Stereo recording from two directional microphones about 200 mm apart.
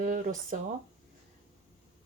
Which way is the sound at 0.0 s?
40° right (ahead or behind).